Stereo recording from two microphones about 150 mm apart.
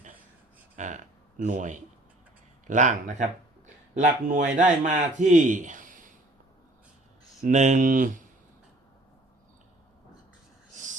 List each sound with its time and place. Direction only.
0.8 s speech: 55° right (ahead or behind)
7.4 s speech: 55° right (ahead or behind)